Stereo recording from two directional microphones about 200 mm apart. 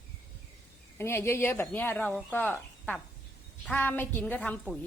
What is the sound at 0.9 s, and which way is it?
Speech, 10° left (ahead or behind).